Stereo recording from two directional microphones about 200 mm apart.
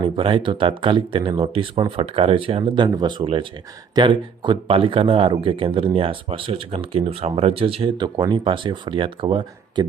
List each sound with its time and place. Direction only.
0.0 s speech: 25° right (ahead or behind)